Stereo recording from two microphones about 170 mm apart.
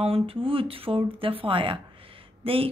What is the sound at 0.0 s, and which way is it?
Speech, 35° right (ahead or behind).